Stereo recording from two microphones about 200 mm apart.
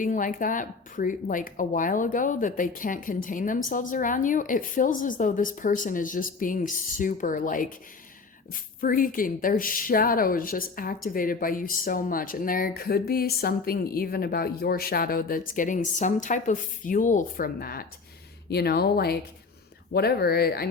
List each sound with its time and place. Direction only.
0.0 s speech: 40° left (ahead or behind)